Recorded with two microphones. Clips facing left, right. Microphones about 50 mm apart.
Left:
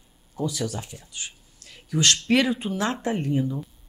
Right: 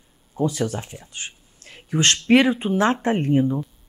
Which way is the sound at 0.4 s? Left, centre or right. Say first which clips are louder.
Right 5 dB; right.